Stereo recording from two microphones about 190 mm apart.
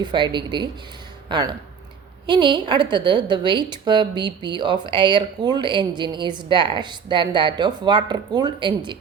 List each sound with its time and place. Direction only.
0.0 s a woman's voice: 25° right (ahead or behind)